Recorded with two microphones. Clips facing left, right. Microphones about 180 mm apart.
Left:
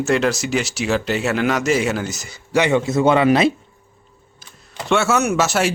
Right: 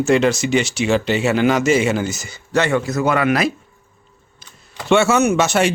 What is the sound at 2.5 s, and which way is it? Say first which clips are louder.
Speech: left 1 dB; 20° left (ahead or behind).